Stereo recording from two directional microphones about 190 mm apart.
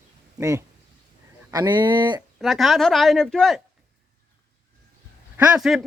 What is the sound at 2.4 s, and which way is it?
Speech, centre (ahead or behind).